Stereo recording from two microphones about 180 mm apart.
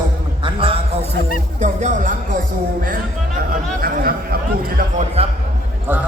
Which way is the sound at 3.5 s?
50° right (ahead or behind).